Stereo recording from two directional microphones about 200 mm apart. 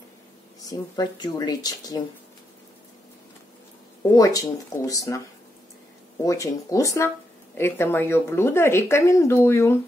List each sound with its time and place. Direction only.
0.7 s speech: 20° left (ahead or behind)
4.1 s speech: 15° left (ahead or behind)
6.2 s speech: 15° left (ahead or behind)